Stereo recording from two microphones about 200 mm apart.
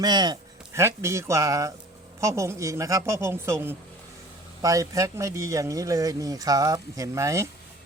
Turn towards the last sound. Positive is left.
turn(degrees=-15)  # may be behind; listen again after turning